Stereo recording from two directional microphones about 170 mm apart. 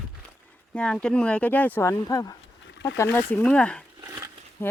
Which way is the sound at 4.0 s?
15° right (ahead or behind).